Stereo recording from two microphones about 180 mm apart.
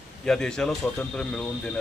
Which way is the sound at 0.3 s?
5° left (ahead or behind).